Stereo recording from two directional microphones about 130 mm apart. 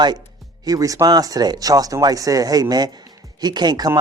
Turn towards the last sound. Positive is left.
turn(degrees=-30)  # may be behind; listen again after turning